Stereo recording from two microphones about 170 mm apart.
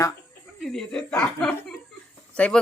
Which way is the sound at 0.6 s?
Centre (ahead or behind).